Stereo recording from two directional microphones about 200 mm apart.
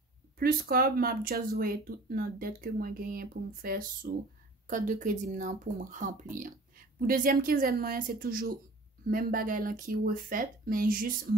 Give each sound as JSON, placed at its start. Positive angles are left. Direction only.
{"t": 0.4, "sound": "speech", "side_deg": -50}